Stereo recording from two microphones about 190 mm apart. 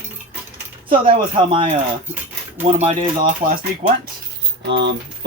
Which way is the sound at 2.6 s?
35° right (ahead or behind).